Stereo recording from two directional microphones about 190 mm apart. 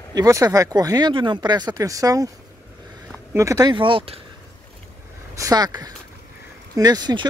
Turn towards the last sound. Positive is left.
turn(degrees=-20)  # may be behind; listen again after turning